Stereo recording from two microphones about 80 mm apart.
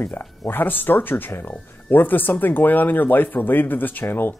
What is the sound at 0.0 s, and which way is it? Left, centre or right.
Speech, left.